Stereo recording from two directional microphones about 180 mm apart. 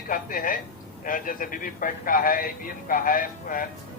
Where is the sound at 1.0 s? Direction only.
50° left (ahead or behind).